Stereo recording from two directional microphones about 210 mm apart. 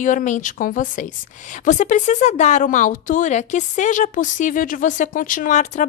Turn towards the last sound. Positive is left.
turn(degrees=35)  # may be behind; listen again after turning